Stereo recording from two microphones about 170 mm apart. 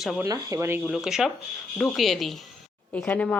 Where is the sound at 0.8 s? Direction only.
Centre (ahead or behind).